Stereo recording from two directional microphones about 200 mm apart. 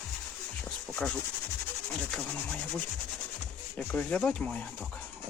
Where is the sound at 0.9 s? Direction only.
5° left (ahead or behind).